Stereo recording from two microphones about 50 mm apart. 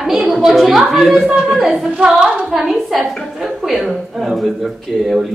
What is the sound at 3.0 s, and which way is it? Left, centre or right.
Speech, centre.